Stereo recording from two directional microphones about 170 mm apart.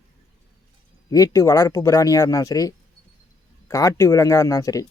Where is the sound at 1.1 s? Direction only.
20° left (ahead or behind).